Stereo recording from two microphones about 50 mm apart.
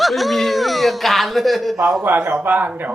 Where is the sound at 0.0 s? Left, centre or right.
Centre.